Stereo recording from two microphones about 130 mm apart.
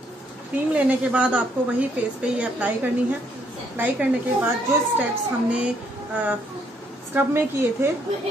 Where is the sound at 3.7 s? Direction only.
15° right (ahead or behind).